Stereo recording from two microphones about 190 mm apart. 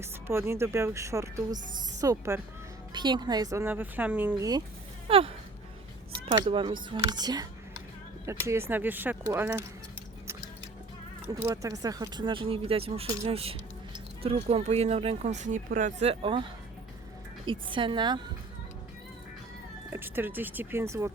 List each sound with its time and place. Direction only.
0.0 s speech: 15° right (ahead or behind)
5.0 s a sound: 30° right (ahead or behind)
6.2 s a woman's voice: 25° right (ahead or behind)
11.3 s a woman's voice: 20° right (ahead or behind)
19.9 s speech: 10° right (ahead or behind)